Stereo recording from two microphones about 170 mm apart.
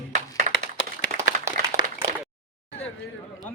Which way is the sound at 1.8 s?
90° left.